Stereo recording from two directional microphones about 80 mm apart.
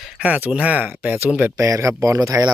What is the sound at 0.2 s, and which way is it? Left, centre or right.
Speech, centre.